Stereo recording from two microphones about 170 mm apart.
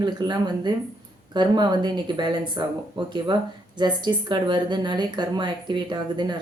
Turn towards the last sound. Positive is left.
turn(degrees=-25)  # may be behind; listen again after turning